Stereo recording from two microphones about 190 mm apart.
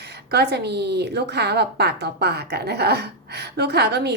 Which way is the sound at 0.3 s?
60° right (ahead or behind).